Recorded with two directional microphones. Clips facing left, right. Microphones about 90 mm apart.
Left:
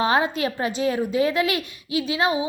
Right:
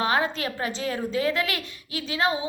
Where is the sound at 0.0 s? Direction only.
20° left (ahead or behind).